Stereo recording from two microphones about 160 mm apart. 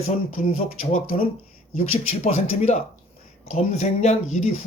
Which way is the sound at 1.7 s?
40° left (ahead or behind).